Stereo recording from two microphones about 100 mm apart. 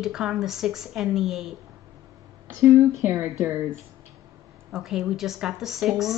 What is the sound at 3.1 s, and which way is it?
Speech, 15° right (ahead or behind).